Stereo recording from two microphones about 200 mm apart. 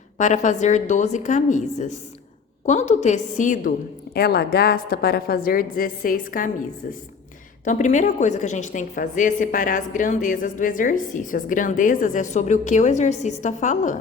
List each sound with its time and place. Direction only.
0.2 s a woman's voice: 35° left (ahead or behind)
4.1 s a woman's voice: 50° left (ahead or behind)
7.6 s a woman's voice: 40° left (ahead or behind)